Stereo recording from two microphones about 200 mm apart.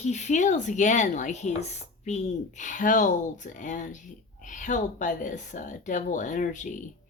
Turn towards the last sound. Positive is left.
turn(degrees=40)  # may be behind; listen again after turning